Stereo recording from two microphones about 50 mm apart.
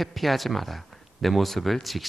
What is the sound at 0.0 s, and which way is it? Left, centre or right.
Speech, centre.